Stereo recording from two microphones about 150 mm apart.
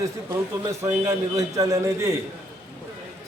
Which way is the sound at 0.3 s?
20° right (ahead or behind).